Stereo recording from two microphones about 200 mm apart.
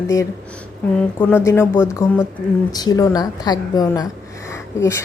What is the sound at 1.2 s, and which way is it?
Speech, 10° left (ahead or behind).